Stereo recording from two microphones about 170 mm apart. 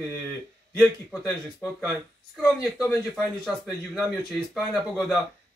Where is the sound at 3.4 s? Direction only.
5° right (ahead or behind).